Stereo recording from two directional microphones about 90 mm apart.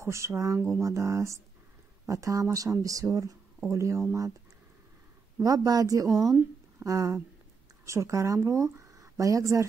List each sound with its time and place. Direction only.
0.0 s speech: 30° right (ahead or behind)
5.4 s speech: 40° right (ahead or behind)